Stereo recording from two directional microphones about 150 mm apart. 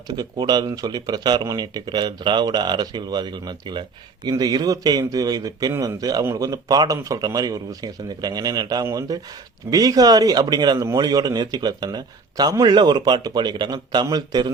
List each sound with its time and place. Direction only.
0.2 s speech: 25° right (ahead or behind)